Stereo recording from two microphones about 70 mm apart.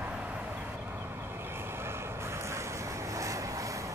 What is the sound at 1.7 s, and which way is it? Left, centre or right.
Vehicle, right.